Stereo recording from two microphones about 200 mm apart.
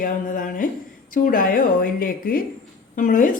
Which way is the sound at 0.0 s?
45° left (ahead or behind).